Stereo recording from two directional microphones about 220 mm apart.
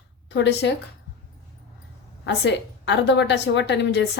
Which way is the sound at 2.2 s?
50° left (ahead or behind).